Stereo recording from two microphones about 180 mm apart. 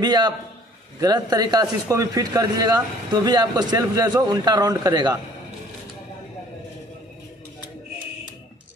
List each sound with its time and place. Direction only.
0.0 s a man's voice: 25° right (ahead or behind)